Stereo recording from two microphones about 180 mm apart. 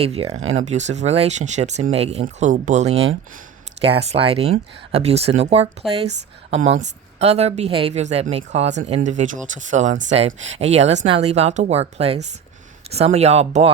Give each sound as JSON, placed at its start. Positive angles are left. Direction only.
{"t": 0.0, "sound": "a woman's voice", "side_deg": -35}
{"t": 2.2, "sound": "a woman's voice", "side_deg": -45}